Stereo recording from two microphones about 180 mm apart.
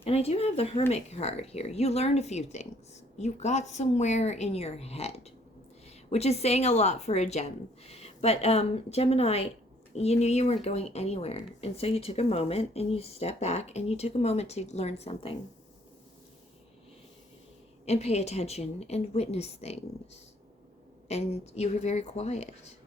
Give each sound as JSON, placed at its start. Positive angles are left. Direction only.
{"t": 0.0, "sound": "speech", "side_deg": 35}
{"t": 17.8, "sound": "speech", "side_deg": 35}
{"t": 21.1, "sound": "speech", "side_deg": 35}